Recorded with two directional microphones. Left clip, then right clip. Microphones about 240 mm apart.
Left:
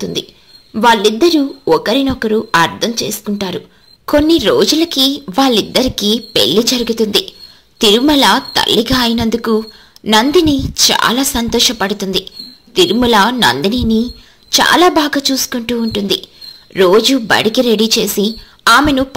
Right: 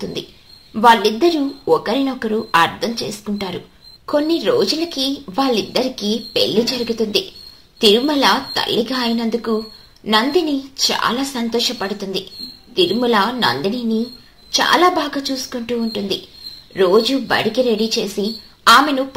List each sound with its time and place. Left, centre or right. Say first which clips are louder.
0.0 s a woman's voice: left 6 dB; left